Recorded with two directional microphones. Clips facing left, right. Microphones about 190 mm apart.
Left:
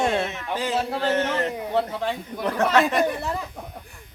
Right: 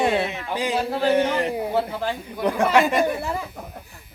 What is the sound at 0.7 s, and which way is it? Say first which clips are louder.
Speech: right 3 dB; centre (ahead or behind).